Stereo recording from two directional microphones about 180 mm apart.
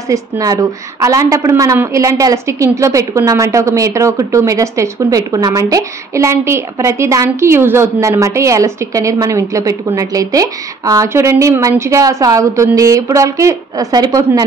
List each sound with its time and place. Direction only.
0.1 s a woman's voice: 20° right (ahead or behind)